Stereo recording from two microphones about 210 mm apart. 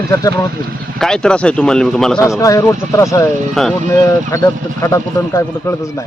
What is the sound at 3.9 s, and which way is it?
Speech, 15° left (ahead or behind).